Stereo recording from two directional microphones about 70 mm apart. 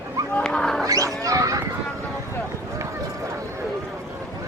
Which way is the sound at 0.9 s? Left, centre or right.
Right.